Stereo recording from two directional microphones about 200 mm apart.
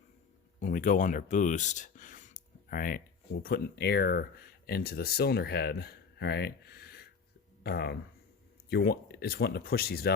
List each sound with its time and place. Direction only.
0.6 s speech: 40° left (ahead or behind)